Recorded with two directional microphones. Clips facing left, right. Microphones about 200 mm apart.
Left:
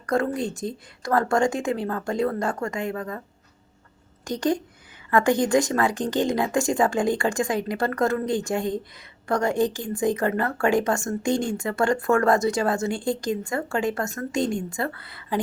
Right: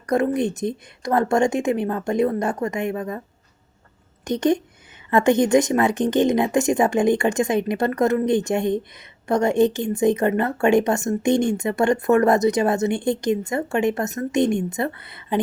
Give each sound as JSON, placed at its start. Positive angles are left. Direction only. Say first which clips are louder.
{"t": 0.0, "sound": "a woman's voice", "louder": "right 4 dB", "side_deg": -20}